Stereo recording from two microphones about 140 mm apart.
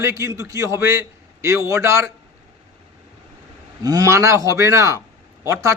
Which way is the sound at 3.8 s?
25° right (ahead or behind).